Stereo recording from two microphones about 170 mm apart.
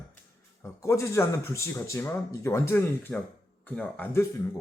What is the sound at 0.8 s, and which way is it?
Speech, 15° left (ahead or behind).